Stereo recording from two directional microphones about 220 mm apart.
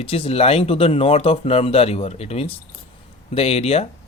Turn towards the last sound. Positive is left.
turn(degrees=30)  # may be behind; listen again after turning